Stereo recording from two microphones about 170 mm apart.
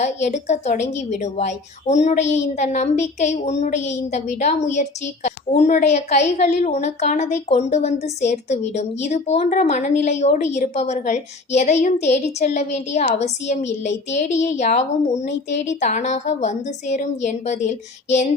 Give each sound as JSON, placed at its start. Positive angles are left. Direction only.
{"t": 0.0, "sound": "a woman's voice", "side_deg": 45}